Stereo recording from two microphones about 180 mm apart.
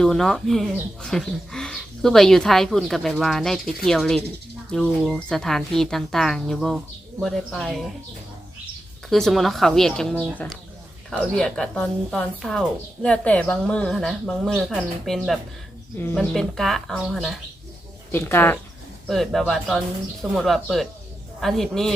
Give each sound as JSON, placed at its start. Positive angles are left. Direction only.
{"t": 0.0, "sound": "speech", "side_deg": 0}
{"t": 9.0, "sound": "speech", "side_deg": 0}
{"t": 18.1, "sound": "speech", "side_deg": 10}
{"t": 19.0, "sound": "speech", "side_deg": 0}